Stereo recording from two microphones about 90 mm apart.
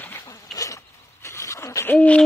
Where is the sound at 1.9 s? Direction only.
15° left (ahead or behind).